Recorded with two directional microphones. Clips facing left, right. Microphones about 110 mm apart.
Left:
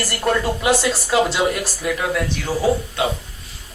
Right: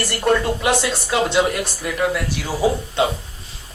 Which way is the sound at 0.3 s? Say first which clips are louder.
Right 1 dB; centre (ahead or behind).